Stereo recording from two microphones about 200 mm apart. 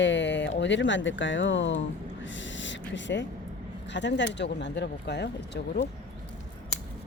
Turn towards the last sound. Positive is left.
turn(degrees=55)  # may be behind; listen again after turning